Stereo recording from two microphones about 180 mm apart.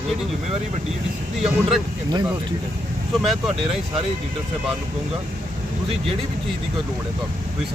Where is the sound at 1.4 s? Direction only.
Centre (ahead or behind).